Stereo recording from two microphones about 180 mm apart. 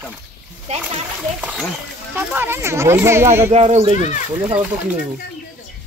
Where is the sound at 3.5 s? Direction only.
35° right (ahead or behind).